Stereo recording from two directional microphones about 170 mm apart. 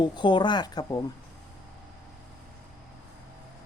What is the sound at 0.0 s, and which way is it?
Speech, 25° left (ahead or behind).